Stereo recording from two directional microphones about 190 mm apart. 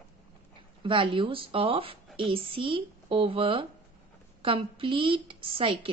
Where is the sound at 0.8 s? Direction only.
25° right (ahead or behind).